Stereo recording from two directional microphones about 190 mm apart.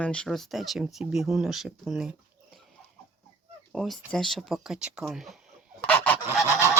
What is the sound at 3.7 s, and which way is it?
Speech, centre (ahead or behind).